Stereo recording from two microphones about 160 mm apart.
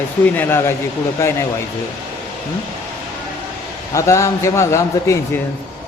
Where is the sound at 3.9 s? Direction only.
20° left (ahead or behind).